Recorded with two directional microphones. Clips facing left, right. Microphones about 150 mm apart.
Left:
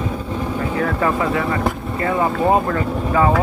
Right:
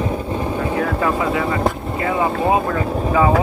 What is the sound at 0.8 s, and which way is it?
Speech, 5° right (ahead or behind).